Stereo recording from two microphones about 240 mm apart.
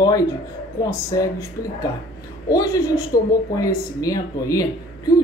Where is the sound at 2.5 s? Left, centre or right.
Centre.